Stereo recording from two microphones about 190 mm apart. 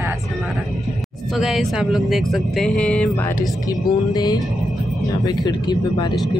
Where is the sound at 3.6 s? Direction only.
20° left (ahead or behind).